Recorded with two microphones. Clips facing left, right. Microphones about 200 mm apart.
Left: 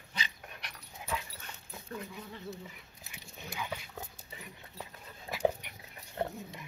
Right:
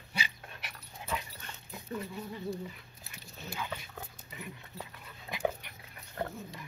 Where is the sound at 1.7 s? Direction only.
10° right (ahead or behind).